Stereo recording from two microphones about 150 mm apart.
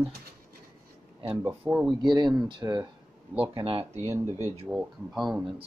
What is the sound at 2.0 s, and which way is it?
Speech, 30° right (ahead or behind).